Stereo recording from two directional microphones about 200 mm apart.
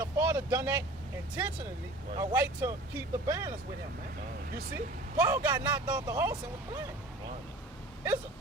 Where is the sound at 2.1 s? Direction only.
15° right (ahead or behind).